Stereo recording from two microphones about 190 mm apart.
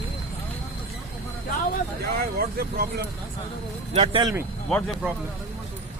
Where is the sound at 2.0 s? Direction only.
55° right (ahead or behind).